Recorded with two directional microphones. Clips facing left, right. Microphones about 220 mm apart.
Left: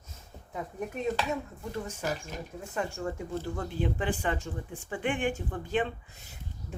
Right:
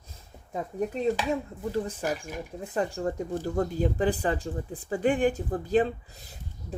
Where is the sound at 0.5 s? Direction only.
35° right (ahead or behind).